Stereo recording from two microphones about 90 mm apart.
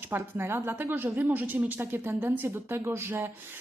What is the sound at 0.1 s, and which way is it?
Speech, 30° right (ahead or behind).